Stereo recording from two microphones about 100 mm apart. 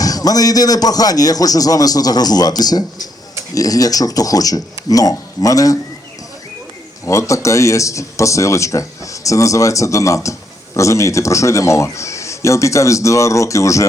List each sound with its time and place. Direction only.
0.0 s speech: 40° left (ahead or behind)
7.0 s speech: 30° left (ahead or behind)